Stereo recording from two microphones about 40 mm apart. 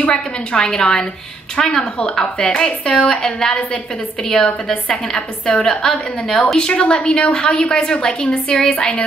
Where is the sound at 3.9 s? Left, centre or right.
Centre.